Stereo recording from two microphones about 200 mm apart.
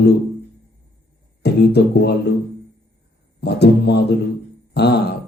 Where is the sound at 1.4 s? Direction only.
55° left (ahead or behind).